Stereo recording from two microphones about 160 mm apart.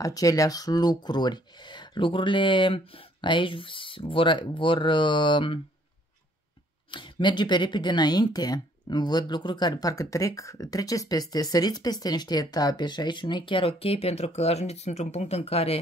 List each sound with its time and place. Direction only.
0.0 s speech: 20° left (ahead or behind)
6.9 s speech: 30° left (ahead or behind)